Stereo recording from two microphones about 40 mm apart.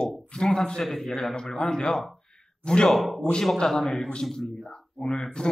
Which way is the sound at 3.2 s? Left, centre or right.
Centre.